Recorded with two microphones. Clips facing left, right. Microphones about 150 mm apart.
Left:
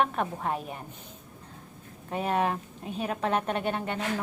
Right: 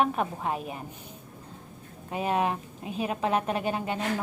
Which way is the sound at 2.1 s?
5° right (ahead or behind).